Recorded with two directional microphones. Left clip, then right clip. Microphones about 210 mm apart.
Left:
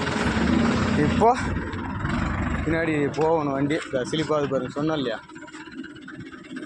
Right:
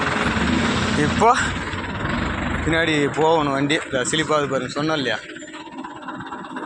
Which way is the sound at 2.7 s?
10° right (ahead or behind).